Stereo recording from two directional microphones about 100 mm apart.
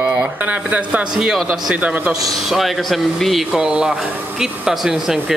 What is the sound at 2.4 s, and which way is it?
Speech, centre (ahead or behind).